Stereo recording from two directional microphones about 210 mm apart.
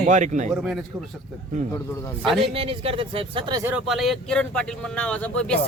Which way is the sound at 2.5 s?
25° right (ahead or behind).